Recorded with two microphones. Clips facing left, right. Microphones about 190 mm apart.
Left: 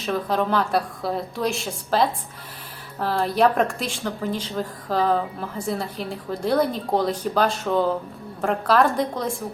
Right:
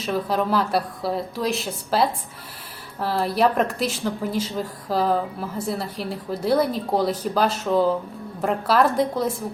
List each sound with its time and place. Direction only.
0.0 s speech: 5° right (ahead or behind)